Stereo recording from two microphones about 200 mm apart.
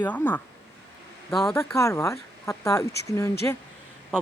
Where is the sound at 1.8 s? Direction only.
15° left (ahead or behind).